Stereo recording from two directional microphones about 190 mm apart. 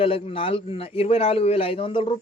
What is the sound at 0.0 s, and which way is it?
Speech, 30° left (ahead or behind).